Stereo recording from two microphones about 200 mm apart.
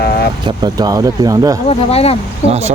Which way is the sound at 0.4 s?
20° right (ahead or behind).